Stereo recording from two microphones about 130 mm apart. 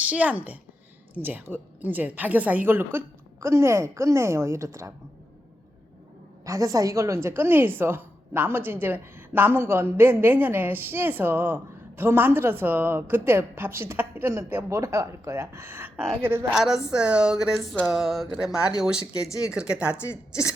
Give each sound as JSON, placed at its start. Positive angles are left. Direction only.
{"t": 0.1, "sound": "a woman's voice", "side_deg": -10}
{"t": 6.4, "sound": "a woman's voice", "side_deg": -25}
{"t": 16.6, "sound": "a woman's voice", "side_deg": -5}
{"t": 17.8, "sound": "music", "side_deg": 0}
{"t": 19.5, "sound": "a woman's voice", "side_deg": -5}